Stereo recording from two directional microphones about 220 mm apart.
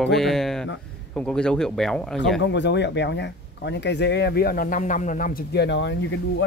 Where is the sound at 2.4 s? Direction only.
55° left (ahead or behind).